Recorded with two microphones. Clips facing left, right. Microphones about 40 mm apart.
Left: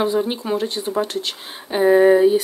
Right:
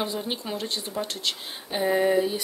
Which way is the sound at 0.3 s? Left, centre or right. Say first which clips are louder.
Left 8 dB; centre.